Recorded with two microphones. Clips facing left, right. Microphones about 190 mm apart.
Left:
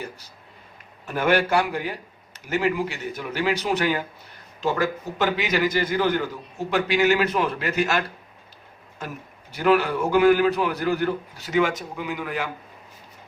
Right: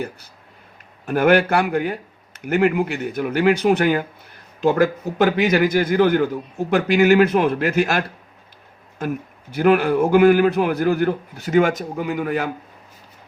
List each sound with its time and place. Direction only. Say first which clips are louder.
1.0 s a man's voice: right 6 dB; 55° right (ahead or behind)